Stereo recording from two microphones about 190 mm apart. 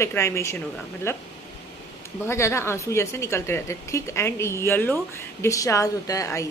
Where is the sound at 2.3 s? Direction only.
15° left (ahead or behind).